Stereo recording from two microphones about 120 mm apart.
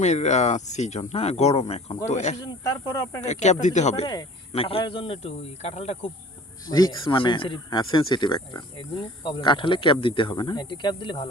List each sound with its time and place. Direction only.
0.0 s speech: 70° left (ahead or behind)
2.0 s speech: 75° left (ahead or behind)
2.4 s speech: 30° left (ahead or behind)
3.2 s speech: 80° left
4.5 s speech: 50° left (ahead or behind)
6.7 s speech: 30° left (ahead or behind)